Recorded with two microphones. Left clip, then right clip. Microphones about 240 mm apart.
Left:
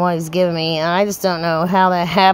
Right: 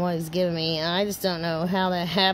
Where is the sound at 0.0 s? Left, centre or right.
Left.